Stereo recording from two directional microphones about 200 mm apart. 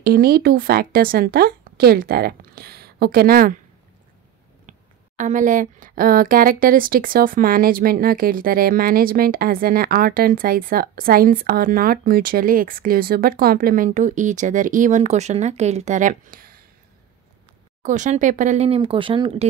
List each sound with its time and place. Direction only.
0.0 s speech: 50° right (ahead or behind)
4.6 s speech: 40° right (ahead or behind)
17.8 s speech: 40° right (ahead or behind)